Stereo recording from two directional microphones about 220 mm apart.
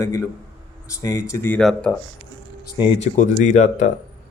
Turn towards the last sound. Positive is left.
turn(degrees=30)  # may be behind; listen again after turning